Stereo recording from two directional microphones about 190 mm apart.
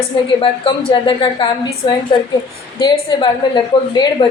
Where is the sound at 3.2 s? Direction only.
25° left (ahead or behind).